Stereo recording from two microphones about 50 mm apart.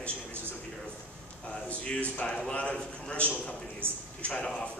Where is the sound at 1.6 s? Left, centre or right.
Left.